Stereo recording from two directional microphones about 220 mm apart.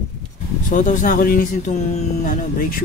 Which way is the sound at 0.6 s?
35° left (ahead or behind).